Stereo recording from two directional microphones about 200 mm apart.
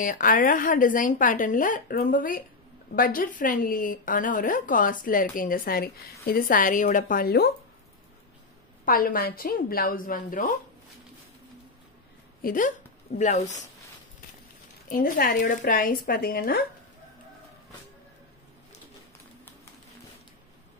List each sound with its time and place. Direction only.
0.0 s speech: 40° left (ahead or behind)
8.8 s speech: 45° left (ahead or behind)
12.4 s a woman's voice: 45° left (ahead or behind)
14.9 s speech: 45° left (ahead or behind)